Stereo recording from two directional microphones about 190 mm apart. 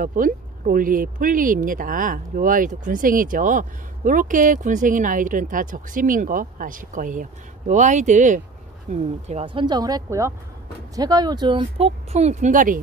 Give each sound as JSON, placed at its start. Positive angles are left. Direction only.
{"t": 0.0, "sound": "speech", "side_deg": -45}